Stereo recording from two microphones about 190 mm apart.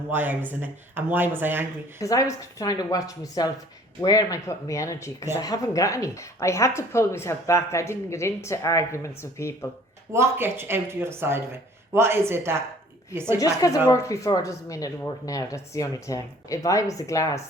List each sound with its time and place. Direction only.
0.1 s speech: 10° right (ahead or behind)
2.0 s a woman's voice: 15° left (ahead or behind)
10.1 s speech: 15° right (ahead or behind)
13.4 s a woman's voice: 20° left (ahead or behind)